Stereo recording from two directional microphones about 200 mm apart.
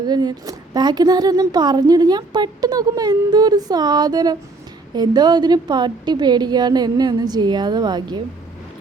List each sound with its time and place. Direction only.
0.1 s a woman's voice: 20° right (ahead or behind)